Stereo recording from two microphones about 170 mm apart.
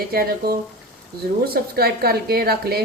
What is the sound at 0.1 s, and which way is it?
A woman's voice, 65° right (ahead or behind).